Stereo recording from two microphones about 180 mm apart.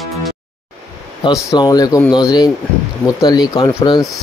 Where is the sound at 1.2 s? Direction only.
25° left (ahead or behind).